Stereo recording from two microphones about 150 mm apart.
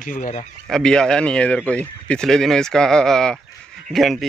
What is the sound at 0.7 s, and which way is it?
Speech, 5° left (ahead or behind).